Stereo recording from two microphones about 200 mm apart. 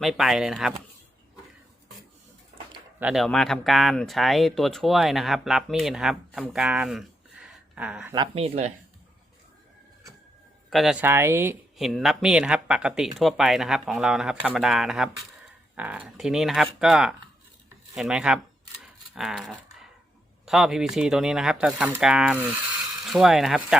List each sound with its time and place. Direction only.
0.0 s speech: centre (ahead or behind)
3.0 s speech: centre (ahead or behind)
8.1 s speech: 25° right (ahead or behind)
10.7 s speech: centre (ahead or behind)
11.8 s speech: centre (ahead or behind)
19.1 s typing: centre (ahead or behind)
20.4 s speech: centre (ahead or behind)